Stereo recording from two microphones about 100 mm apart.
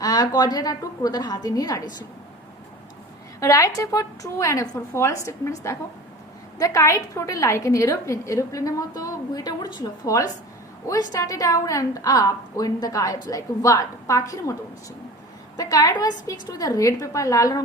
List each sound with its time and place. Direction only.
0.0 s a woman's voice: 40° left (ahead or behind)
3.4 s a woman's voice: 35° left (ahead or behind)
15.5 s a woman's voice: 35° left (ahead or behind)